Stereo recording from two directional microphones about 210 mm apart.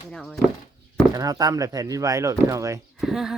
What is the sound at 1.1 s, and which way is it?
Speech, 15° right (ahead or behind).